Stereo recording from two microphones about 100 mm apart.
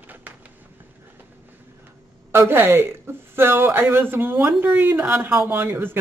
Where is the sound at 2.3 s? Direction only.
25° right (ahead or behind).